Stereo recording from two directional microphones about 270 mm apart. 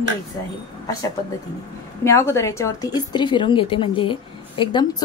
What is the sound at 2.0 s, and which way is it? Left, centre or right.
A woman's voice, centre.